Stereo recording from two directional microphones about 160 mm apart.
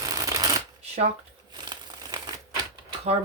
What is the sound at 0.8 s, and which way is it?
Shuffling cards, 40° right (ahead or behind).